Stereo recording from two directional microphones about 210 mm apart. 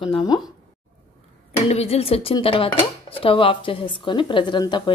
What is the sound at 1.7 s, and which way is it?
Speech, 30° left (ahead or behind).